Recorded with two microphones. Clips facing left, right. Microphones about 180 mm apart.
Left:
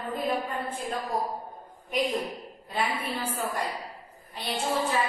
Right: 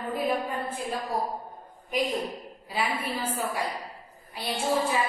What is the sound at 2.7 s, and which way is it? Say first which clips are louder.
A woman's voice: even; 10° right (ahead or behind).